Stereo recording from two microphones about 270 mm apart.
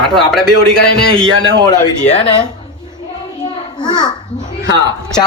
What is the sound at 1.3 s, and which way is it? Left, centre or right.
Speech, right.